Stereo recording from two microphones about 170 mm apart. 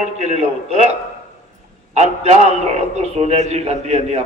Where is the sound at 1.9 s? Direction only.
40° right (ahead or behind).